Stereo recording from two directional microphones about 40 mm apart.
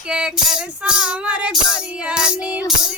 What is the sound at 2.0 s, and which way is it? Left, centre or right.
Music, centre.